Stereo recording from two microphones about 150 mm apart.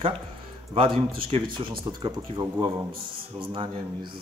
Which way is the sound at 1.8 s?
30° right (ahead or behind).